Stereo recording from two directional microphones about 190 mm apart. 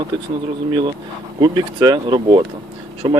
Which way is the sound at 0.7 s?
25° right (ahead or behind).